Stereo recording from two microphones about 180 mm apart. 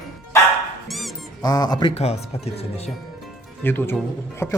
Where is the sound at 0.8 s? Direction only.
Centre (ahead or behind).